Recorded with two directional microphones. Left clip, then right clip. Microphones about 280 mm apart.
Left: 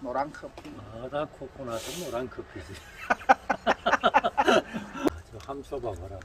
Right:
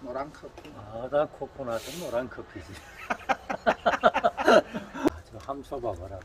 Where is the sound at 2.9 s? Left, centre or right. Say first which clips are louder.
Left 7 dB; centre.